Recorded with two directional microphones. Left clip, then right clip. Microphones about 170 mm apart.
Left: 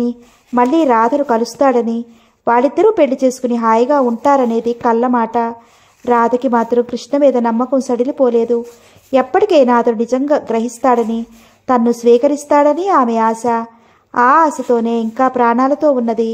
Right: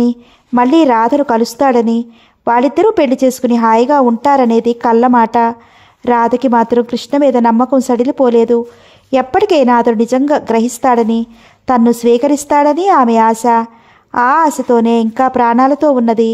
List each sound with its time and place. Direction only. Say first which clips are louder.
0.0 s speech: right 5 dB; 35° right (ahead or behind)